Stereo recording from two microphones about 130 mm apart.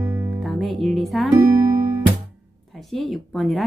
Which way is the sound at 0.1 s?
25° right (ahead or behind).